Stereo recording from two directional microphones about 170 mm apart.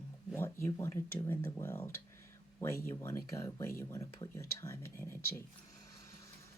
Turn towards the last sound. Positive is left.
turn(degrees=15)  # may be behind; listen again after turning